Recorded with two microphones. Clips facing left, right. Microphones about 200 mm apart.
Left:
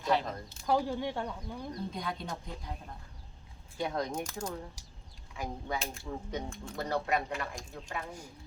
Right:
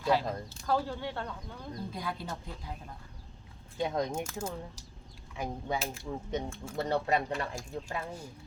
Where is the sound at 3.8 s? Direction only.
20° right (ahead or behind).